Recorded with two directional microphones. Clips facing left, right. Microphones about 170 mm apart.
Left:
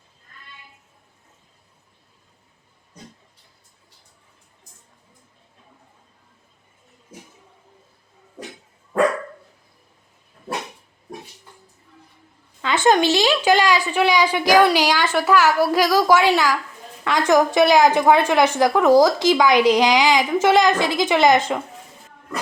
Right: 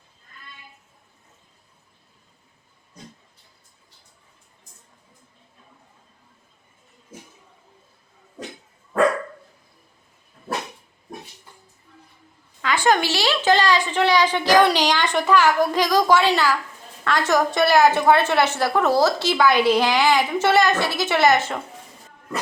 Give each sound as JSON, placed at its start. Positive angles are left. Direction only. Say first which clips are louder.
{"t": 12.6, "sound": "a woman's voice", "louder": "left 3 dB", "side_deg": 20}